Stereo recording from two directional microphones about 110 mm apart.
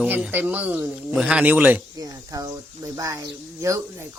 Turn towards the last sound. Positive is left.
turn(degrees=-30)  # may be behind; listen again after turning